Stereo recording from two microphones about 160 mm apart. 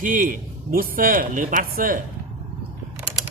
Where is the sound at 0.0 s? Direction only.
55° right (ahead or behind).